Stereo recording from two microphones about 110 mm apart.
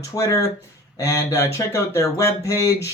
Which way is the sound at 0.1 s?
35° left (ahead or behind).